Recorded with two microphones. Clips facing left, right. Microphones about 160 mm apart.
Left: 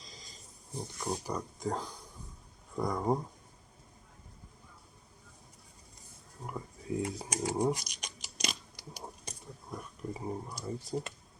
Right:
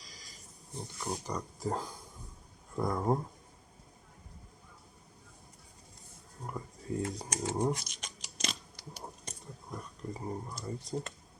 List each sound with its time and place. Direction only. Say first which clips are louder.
0.0 s pig: left 2 dB; 25° left (ahead or behind)
1.0 s speech: left 1 dB; 5° left (ahead or behind)
6.4 s a sound: even; 5° left (ahead or behind)